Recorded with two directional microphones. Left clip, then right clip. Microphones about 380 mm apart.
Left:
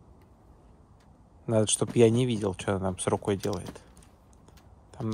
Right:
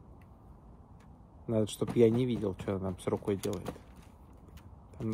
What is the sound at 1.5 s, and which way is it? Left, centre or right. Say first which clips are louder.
Speech: left 6 dB; left.